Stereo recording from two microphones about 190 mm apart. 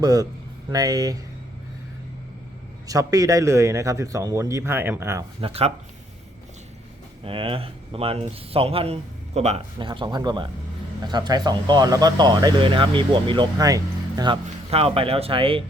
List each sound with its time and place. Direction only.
0.0 s speech: 20° right (ahead or behind)
2.8 s a man's voice: 20° right (ahead or behind)
5.4 s a man's voice: 30° right (ahead or behind)
7.3 s a man's voice: 30° right (ahead or behind)